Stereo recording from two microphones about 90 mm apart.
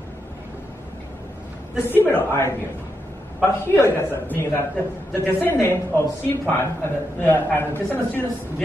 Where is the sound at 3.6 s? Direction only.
25° left (ahead or behind).